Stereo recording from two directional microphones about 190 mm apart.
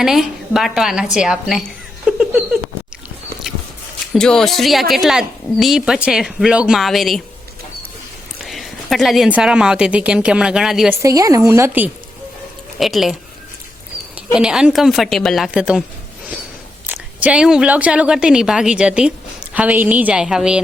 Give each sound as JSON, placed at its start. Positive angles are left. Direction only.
{"t": 0.0, "sound": "a woman's voice", "side_deg": 0}
{"t": 2.0, "sound": "a sound", "side_deg": -5}
{"t": 3.5, "sound": "walk", "side_deg": 0}
{"t": 4.1, "sound": "a woman's voice", "side_deg": 5}
{"t": 8.4, "sound": "a woman's voice", "side_deg": 0}
{"t": 11.0, "sound": "speech", "side_deg": -15}
{"t": 12.8, "sound": "a woman's voice", "side_deg": 0}
{"t": 14.3, "sound": "a woman's voice", "side_deg": -5}
{"t": 16.8, "sound": "a woman's voice", "side_deg": -10}